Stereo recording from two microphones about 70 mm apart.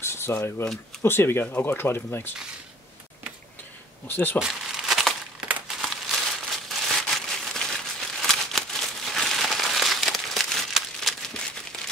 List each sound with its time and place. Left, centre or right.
0.0 s speech: left
4.1 s speech: left
4.4 s crumpling: centre